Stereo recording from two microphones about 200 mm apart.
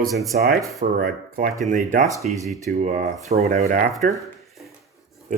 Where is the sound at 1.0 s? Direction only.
45° right (ahead or behind).